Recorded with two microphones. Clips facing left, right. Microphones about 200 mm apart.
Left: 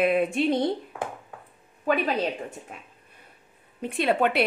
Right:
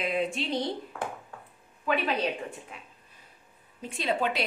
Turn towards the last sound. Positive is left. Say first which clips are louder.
# left 6 dB
turn(degrees=60)  # may be behind; listen again after turning